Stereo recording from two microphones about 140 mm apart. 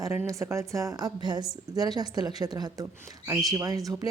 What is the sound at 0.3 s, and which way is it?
A woman's voice, 20° right (ahead or behind).